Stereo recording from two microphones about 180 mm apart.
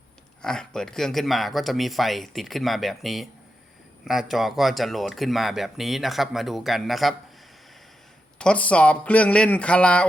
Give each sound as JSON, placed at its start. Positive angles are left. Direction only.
{"t": 0.4, "sound": "speech", "side_deg": 5}
{"t": 8.4, "sound": "speech", "side_deg": 5}